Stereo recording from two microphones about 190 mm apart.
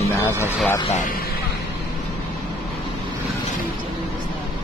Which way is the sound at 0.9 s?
45° left (ahead or behind).